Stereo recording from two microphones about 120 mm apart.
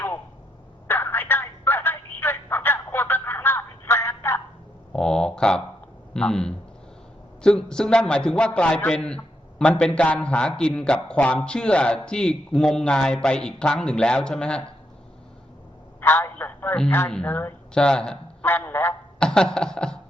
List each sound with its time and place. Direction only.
0.9 s telephone: 15° left (ahead or behind)
4.9 s a sound: 5° left (ahead or behind)
6.1 s a man's voice: 5° left (ahead or behind)
16.0 s telephone: 15° left (ahead or behind)
17.1 s a woman's voice: 10° left (ahead or behind)
19.2 s a sound: 5° left (ahead or behind)